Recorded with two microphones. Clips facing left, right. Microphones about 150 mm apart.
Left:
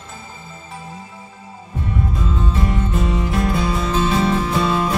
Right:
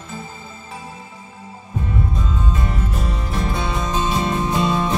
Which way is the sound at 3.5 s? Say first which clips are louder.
Left 3 dB; 25° right (ahead or behind).